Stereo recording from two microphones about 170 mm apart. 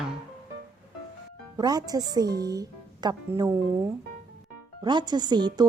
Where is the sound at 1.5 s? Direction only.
25° right (ahead or behind).